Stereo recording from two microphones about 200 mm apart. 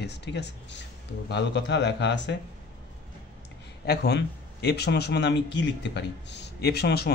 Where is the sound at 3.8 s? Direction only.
55° left (ahead or behind).